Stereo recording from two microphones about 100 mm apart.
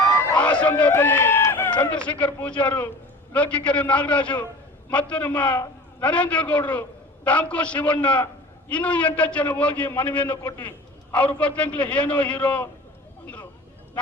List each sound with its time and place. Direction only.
0.3 s run: 15° left (ahead or behind)
0.9 s run: 25° left (ahead or behind)
1.8 s a man's voice: 10° left (ahead or behind)
13.2 s vehicle: 15° left (ahead or behind)